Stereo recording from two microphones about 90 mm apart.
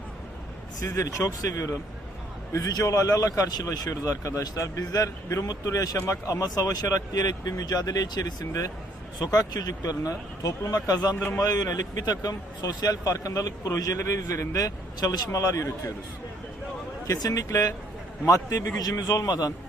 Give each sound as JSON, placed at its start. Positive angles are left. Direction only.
{"t": 0.8, "sound": "speech", "side_deg": 40}
{"t": 17.2, "sound": "speech", "side_deg": 40}